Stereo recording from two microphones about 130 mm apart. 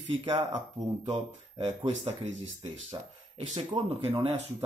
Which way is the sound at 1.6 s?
55° right (ahead or behind).